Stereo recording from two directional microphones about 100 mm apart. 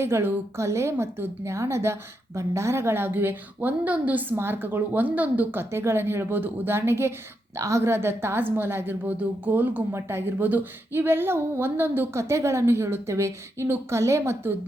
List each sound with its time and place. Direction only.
0.0 s a woman's voice: 25° right (ahead or behind)